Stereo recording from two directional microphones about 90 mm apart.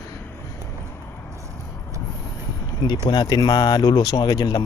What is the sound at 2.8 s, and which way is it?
Speech, 55° left (ahead or behind).